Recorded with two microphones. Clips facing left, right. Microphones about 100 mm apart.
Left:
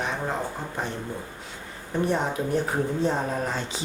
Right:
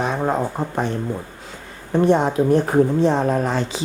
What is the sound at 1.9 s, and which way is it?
Speech, 70° right (ahead or behind).